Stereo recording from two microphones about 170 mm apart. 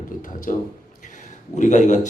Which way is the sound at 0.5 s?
50° left (ahead or behind).